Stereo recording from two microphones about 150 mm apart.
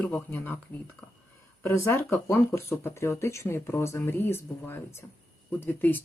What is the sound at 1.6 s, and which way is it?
Speech, 15° left (ahead or behind).